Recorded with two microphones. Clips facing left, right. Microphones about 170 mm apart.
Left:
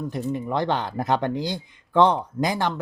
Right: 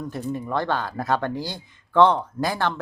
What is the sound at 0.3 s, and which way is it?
Speech, 15° left (ahead or behind).